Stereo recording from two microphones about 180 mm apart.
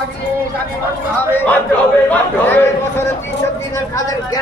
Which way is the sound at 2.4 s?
10° left (ahead or behind).